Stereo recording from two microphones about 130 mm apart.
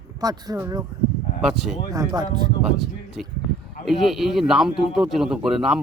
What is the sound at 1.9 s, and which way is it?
Speech, 30° right (ahead or behind).